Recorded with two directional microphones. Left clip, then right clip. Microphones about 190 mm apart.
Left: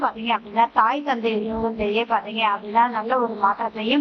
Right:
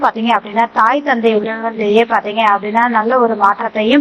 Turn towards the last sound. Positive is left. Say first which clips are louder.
# right 9 dB
turn(degrees=-30)  # may be behind; listen again after turning